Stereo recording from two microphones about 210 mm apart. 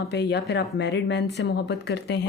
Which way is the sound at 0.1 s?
55° left (ahead or behind).